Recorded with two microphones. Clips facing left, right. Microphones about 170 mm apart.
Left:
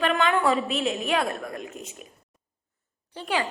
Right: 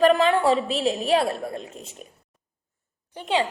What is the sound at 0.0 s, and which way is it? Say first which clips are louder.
A woman's voice: right 5 dB; 35° right (ahead or behind).